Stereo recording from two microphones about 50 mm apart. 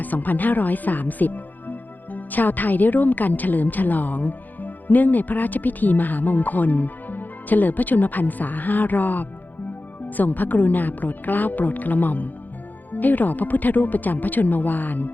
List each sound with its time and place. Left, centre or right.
0.0 s speech: left